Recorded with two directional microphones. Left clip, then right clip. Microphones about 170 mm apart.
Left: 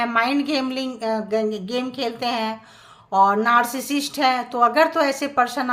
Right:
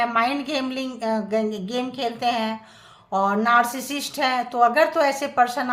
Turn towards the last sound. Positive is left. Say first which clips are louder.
# even
turn(degrees=15)  # may be behind; listen again after turning